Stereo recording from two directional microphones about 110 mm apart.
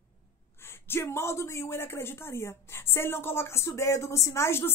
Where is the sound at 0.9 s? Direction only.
25° left (ahead or behind).